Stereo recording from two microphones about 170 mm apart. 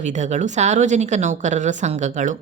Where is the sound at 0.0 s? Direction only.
45° right (ahead or behind).